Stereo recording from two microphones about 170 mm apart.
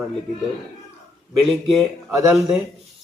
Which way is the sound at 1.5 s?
5° left (ahead or behind).